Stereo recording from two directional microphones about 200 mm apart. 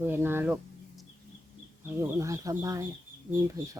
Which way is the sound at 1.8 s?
15° right (ahead or behind).